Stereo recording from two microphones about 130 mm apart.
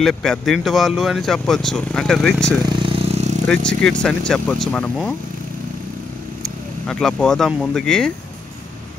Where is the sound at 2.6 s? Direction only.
35° right (ahead or behind); by 3.3 s 55° right (ahead or behind).